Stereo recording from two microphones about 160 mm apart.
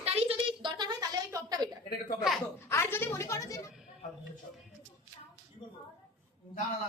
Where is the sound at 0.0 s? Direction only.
40° right (ahead or behind); by 1.7 s 25° right (ahead or behind).